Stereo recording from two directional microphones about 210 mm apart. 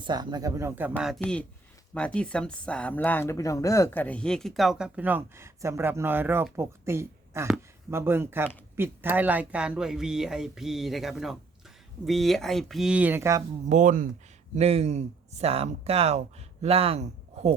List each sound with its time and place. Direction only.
0.0 s speech: 20° right (ahead or behind)
13.7 s speech: 35° right (ahead or behind)